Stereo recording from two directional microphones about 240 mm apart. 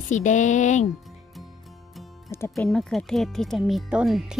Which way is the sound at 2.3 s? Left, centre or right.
Centre.